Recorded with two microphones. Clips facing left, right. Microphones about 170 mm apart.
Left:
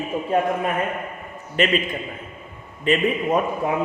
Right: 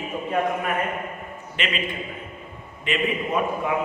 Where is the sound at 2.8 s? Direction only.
40° left (ahead or behind).